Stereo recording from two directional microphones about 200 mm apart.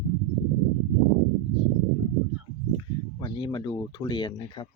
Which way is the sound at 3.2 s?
20° left (ahead or behind).